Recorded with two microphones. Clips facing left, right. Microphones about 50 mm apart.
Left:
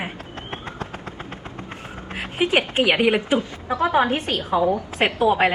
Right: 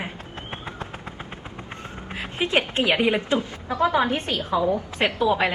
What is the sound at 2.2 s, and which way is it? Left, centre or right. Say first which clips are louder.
A woman's voice: left 3 dB; left.